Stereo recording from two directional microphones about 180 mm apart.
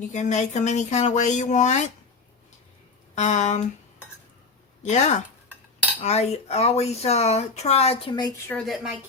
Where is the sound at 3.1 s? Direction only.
40° left (ahead or behind).